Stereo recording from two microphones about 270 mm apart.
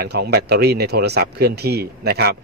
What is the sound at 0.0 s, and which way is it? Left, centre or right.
Speech, right.